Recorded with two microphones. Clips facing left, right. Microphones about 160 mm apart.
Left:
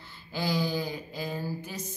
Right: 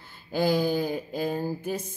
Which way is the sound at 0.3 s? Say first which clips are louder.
Right 6 dB; 50° right (ahead or behind).